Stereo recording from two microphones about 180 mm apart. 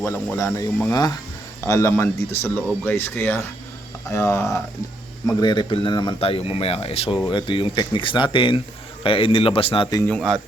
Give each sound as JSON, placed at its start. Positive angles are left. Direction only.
{"t": 0.0, "sound": "speech", "side_deg": 15}
{"t": 10.1, "sound": "speech", "side_deg": 0}